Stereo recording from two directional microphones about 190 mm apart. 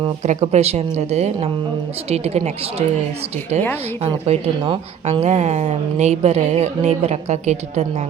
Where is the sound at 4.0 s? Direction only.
30° right (ahead or behind).